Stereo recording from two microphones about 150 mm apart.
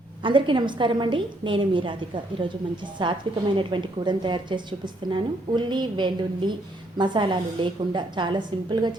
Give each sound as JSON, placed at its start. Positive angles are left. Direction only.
{"t": 0.2, "sound": "a woman's voice", "side_deg": -35}